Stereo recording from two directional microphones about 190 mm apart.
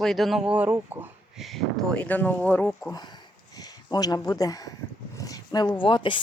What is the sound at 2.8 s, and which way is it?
Speech, 20° left (ahead or behind).